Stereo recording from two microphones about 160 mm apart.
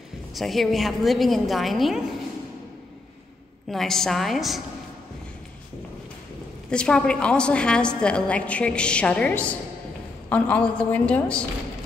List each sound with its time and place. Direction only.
0.3 s a woman's voice: centre (ahead or behind)
3.7 s a woman's voice: centre (ahead or behind)
6.7 s a woman's voice: 5° left (ahead or behind)